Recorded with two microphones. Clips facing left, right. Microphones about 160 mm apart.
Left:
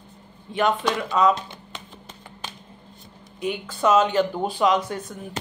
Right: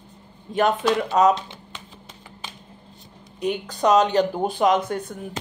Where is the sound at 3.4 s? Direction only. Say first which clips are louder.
Right 1 dB; 40° right (ahead or behind).